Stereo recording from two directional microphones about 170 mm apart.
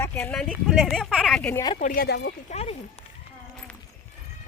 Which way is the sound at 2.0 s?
80° left.